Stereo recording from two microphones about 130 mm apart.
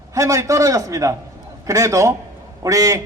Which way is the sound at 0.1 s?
25° right (ahead or behind).